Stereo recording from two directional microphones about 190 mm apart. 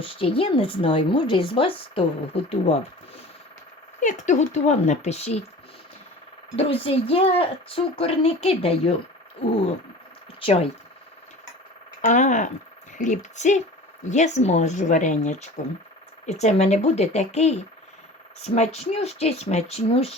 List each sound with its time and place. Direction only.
0.0 s speech: 30° left (ahead or behind)
4.0 s speech: 40° left (ahead or behind)
6.6 s speech: 30° left (ahead or behind)
10.4 s speech: 30° left (ahead or behind)
12.0 s speech: 40° left (ahead or behind)